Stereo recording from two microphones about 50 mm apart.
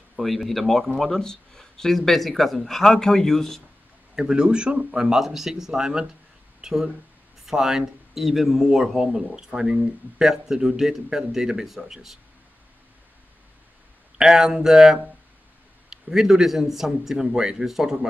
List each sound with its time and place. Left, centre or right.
0.1 s speech: centre
4.1 s a man's voice: centre
5.0 s a man's voice: centre
14.1 s a man's voice: centre